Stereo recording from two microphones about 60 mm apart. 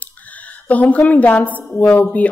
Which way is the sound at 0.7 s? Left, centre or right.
Left.